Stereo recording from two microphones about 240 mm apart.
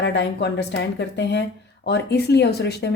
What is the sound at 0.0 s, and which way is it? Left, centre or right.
A woman's voice, left.